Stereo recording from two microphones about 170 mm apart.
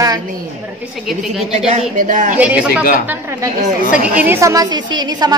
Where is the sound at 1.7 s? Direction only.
45° right (ahead or behind).